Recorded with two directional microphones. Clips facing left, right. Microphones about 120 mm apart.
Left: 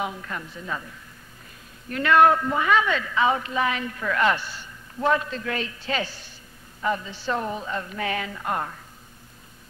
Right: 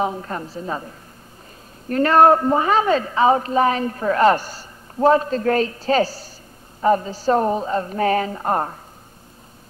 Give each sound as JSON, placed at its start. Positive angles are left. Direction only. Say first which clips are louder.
{"t": 0.0, "sound": "a woman's voice", "louder": "right 7 dB", "side_deg": -35}